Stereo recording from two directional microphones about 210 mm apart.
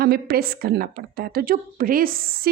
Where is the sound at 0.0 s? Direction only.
50° right (ahead or behind).